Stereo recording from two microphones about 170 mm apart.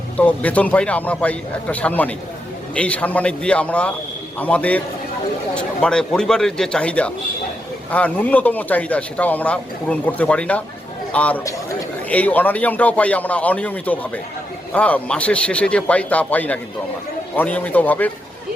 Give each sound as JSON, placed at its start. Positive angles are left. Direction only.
{"t": 0.2, "sound": "speech", "side_deg": 10}
{"t": 11.4, "sound": "a man's voice", "side_deg": 20}
{"t": 12.0, "sound": "speech", "side_deg": 10}